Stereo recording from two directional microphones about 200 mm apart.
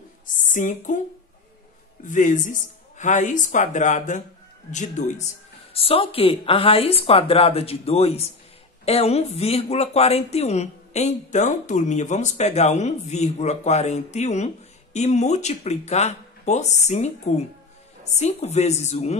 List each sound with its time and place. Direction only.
0.5 s speech: 40° left (ahead or behind)
2.0 s speech: 40° left (ahead or behind)